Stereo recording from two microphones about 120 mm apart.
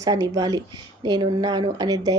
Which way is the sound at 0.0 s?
30° right (ahead or behind).